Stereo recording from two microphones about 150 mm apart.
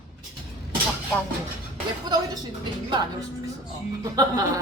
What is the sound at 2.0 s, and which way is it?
Speech, 25° right (ahead or behind).